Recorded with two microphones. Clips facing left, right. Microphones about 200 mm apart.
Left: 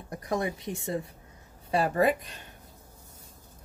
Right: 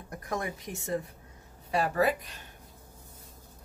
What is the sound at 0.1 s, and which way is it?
Speech, 20° left (ahead or behind).